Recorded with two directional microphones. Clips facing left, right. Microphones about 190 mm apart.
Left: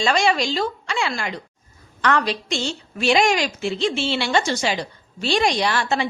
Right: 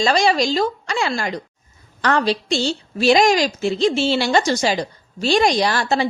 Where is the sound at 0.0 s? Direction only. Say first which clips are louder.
Right 3 dB; 35° right (ahead or behind).